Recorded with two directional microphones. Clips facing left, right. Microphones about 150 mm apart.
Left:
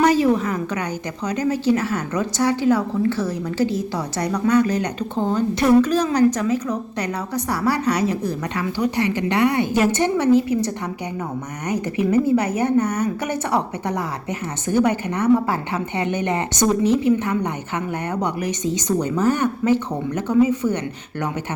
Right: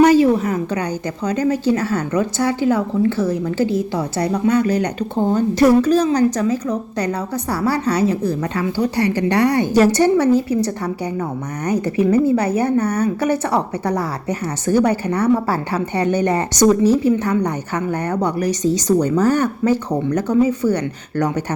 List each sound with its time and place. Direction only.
0.0 s a woman's voice: 30° right (ahead or behind)
11.7 s a woman's voice: 30° right (ahead or behind)